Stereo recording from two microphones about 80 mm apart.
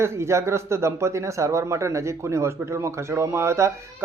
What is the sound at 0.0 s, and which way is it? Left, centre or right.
Speech, right.